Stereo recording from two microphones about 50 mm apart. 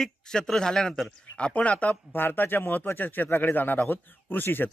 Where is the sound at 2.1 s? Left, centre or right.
Left.